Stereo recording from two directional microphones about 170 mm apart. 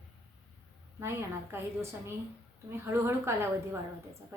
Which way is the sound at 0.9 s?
15° right (ahead or behind).